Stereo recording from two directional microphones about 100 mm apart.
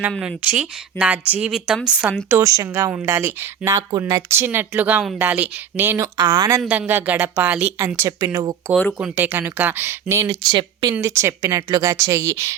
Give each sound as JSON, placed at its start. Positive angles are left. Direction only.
{"t": 0.2, "sound": "speech", "side_deg": -10}
{"t": 2.4, "sound": "speech", "side_deg": -35}
{"t": 2.6, "sound": "speech", "side_deg": -25}
{"t": 6.1, "sound": "speech", "side_deg": -45}
{"t": 6.7, "sound": "speech", "side_deg": -20}
{"t": 8.2, "sound": "speech", "side_deg": -40}
{"t": 9.0, "sound": "speech", "side_deg": -15}
{"t": 10.2, "sound": "speech", "side_deg": -45}
{"t": 10.9, "sound": "speech", "side_deg": -25}